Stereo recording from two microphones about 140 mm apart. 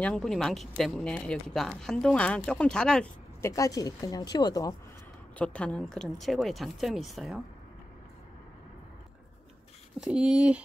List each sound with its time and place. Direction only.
0.0 s speech: 5° left (ahead or behind)
3.4 s speech: 25° left (ahead or behind)
5.4 s speech: 10° left (ahead or behind)
9.9 s speech: 5° right (ahead or behind)